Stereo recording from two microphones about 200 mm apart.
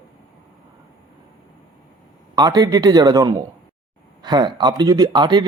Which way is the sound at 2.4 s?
20° right (ahead or behind).